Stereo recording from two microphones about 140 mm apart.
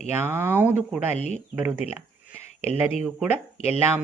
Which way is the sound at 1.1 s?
55° left (ahead or behind).